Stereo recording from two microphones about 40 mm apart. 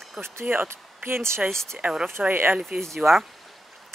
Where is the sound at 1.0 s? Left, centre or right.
Right.